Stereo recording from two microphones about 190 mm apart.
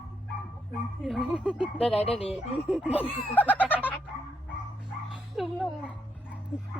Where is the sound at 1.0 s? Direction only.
Centre (ahead or behind).